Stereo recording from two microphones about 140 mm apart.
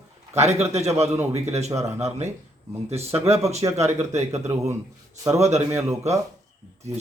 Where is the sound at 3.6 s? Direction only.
35° right (ahead or behind).